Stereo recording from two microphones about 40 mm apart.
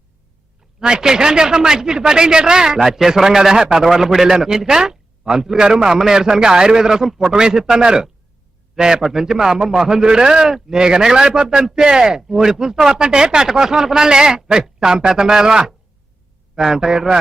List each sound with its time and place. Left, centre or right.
0.8 s speech: centre